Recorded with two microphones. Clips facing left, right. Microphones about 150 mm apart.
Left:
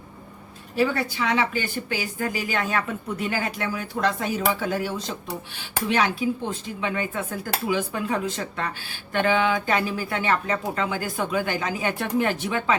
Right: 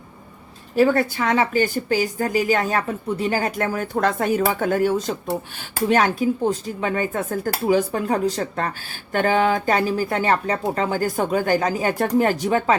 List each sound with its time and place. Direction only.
0.8 s a woman's voice: 50° right (ahead or behind)